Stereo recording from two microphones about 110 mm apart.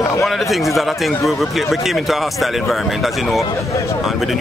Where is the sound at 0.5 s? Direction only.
Centre (ahead or behind).